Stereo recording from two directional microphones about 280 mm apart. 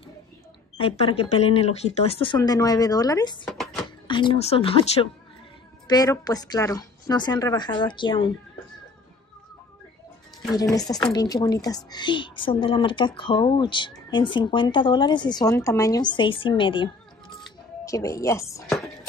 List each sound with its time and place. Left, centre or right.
0.7 s a woman's voice: centre
3.4 s a sound: centre
4.1 s a woman's voice: centre
10.5 s a woman's voice: centre